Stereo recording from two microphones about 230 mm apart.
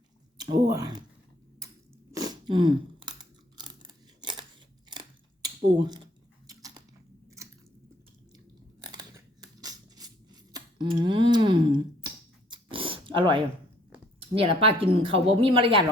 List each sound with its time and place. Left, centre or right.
0.3 s speech: centre
2.1 s chewing: centre
4.2 s scissors: centre
4.9 s a sound: centre
5.8 s speech: centre
6.5 s biting: centre
8.9 s scissors: centre
10.5 s a sound: centre
12.5 s dog: right
14.2 s a woman's voice: right